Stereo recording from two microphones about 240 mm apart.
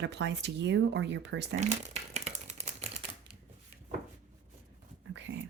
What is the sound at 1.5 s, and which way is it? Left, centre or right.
Typewriter, right.